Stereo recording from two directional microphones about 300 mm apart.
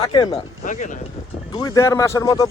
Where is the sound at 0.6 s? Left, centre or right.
Left.